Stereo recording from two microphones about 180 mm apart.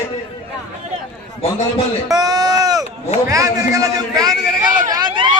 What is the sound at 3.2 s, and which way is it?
A man's voice, 20° right (ahead or behind).